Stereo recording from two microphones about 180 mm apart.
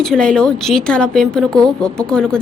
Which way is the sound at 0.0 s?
5° left (ahead or behind).